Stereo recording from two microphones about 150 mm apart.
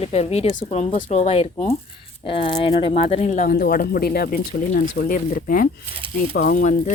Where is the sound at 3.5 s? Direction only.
80° left.